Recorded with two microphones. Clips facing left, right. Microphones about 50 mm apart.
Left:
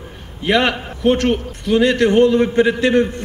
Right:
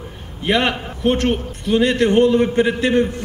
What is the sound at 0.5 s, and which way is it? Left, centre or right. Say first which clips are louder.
Speech: left 2 dB; left.